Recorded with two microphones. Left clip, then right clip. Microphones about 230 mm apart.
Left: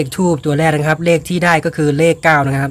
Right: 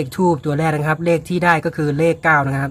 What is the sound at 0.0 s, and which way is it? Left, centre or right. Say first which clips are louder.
Speech: left 2 dB; centre.